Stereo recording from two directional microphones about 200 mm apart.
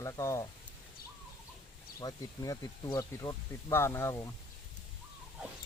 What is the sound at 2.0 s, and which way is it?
Speech, 20° left (ahead or behind).